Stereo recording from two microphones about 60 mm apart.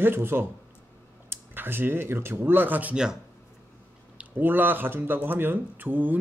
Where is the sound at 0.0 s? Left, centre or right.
Right.